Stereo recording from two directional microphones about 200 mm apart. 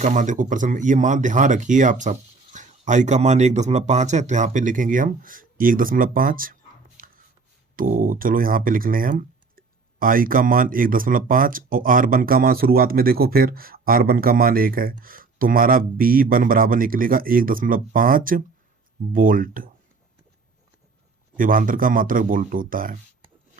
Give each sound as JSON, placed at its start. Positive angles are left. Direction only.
{"t": 0.0, "sound": "speech", "side_deg": -35}
{"t": 21.3, "sound": "speech", "side_deg": -45}